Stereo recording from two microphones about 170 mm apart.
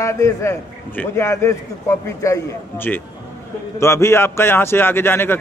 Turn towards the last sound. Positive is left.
turn(degrees=10)  # may be behind; listen again after turning